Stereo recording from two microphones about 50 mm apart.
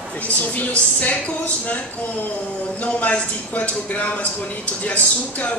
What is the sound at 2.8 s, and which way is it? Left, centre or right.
A man's voice, left.